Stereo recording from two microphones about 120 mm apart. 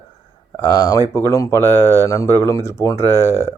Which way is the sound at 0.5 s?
20° left (ahead or behind).